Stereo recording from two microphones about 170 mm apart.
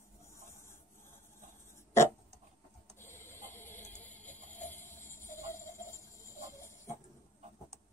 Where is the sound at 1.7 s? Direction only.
15° left (ahead or behind).